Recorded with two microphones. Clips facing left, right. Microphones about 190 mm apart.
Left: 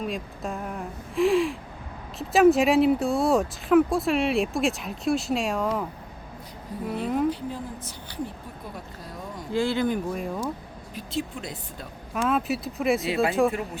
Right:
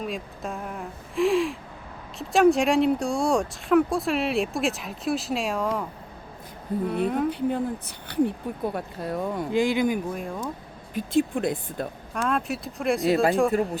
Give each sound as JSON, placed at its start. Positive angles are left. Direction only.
{"t": 0.0, "sound": "speech", "side_deg": 0}
{"t": 6.8, "sound": "speech", "side_deg": 0}
{"t": 7.3, "sound": "speech", "side_deg": -60}
{"t": 9.5, "sound": "speech", "side_deg": -15}
{"t": 10.1, "sound": "speech", "side_deg": 0}
{"t": 10.9, "sound": "speech", "side_deg": -50}
{"t": 12.1, "sound": "speech", "side_deg": 0}